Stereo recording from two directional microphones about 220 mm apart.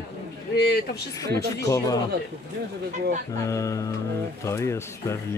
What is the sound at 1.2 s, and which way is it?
Speech, 15° left (ahead or behind).